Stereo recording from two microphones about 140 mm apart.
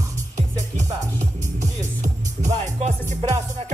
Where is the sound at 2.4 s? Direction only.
55° right (ahead or behind).